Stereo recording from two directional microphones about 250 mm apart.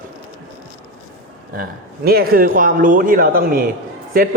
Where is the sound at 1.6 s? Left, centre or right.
Right.